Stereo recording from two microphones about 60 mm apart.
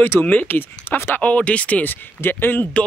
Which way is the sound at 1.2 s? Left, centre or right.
Left.